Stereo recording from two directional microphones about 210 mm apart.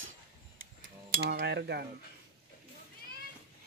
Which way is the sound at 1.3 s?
50° right (ahead or behind).